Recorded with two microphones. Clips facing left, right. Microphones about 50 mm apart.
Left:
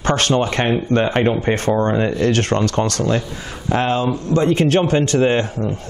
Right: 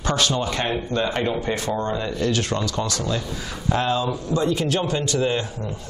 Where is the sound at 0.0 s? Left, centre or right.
Left.